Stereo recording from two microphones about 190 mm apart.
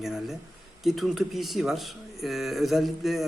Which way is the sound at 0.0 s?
Centre (ahead or behind).